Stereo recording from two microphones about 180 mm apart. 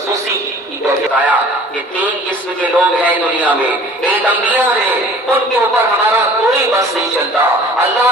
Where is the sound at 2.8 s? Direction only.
10° right (ahead or behind).